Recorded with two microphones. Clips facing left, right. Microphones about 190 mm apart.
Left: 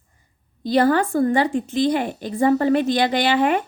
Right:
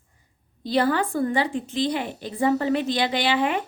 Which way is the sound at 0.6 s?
45° left (ahead or behind).